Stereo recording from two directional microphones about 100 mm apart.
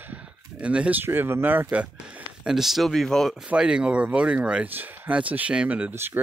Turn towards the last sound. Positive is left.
turn(degrees=-20)  # may be behind; listen again after turning